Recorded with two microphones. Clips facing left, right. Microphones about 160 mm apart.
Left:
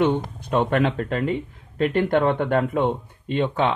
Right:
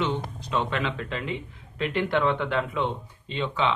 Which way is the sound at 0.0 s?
55° left (ahead or behind).